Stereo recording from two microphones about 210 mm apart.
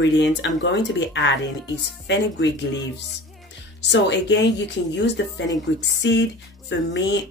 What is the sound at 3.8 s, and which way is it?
Speech, 55° left (ahead or behind).